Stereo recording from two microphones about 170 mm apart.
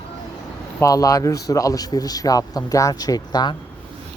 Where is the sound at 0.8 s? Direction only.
20° left (ahead or behind).